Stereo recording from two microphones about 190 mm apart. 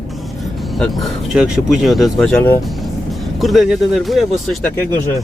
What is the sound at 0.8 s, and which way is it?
Speech, centre (ahead or behind).